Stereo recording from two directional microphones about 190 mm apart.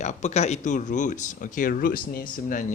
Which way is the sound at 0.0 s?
40° left (ahead or behind).